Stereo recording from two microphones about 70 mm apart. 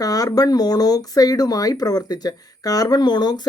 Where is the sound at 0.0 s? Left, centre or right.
Left.